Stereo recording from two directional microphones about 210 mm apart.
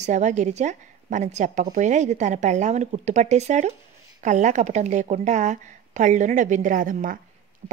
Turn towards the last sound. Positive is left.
turn(degrees=-40)  # may be behind; listen again after turning